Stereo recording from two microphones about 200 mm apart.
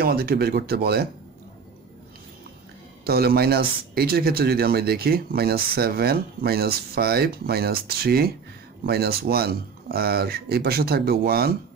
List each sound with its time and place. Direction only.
0.0 s speech: 50° right (ahead or behind)
3.1 s speech: 50° right (ahead or behind)